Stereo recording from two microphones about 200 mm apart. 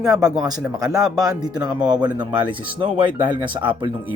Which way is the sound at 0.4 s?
20° right (ahead or behind).